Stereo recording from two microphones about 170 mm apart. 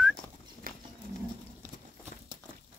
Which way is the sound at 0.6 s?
60° right (ahead or behind).